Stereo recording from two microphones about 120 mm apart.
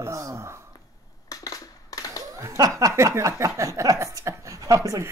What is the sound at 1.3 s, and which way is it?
Crushing, 30° left (ahead or behind).